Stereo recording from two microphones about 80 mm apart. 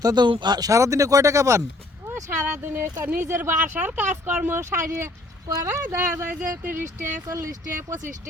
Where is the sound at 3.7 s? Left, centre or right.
Right.